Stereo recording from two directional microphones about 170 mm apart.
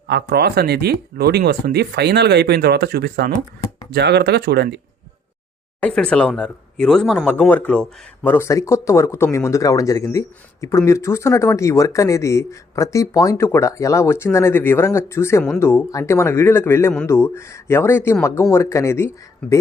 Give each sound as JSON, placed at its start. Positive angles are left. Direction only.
{"t": 0.1, "sound": "speech", "side_deg": -75}
{"t": 5.8, "sound": "speech", "side_deg": 5}